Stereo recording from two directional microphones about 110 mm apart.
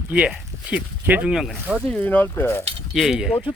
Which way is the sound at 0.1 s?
10° right (ahead or behind).